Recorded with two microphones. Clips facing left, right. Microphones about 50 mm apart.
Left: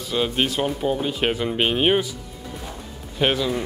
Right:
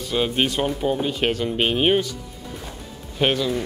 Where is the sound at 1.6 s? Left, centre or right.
Centre.